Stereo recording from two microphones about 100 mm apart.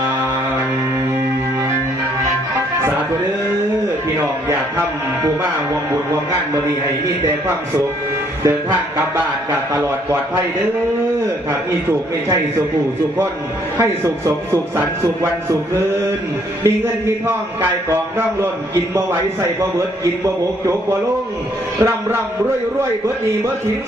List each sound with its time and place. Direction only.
4.4 s a man's voice: 20° right (ahead or behind)
8.4 s a man's voice: 20° right (ahead or behind)
13.7 s a man's voice: 25° right (ahead or behind)
16.6 s a man's voice: 25° right (ahead or behind)
21.8 s a man's voice: 25° right (ahead or behind)